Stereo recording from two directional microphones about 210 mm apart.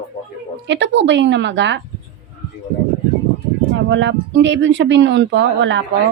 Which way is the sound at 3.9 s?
60° right (ahead or behind).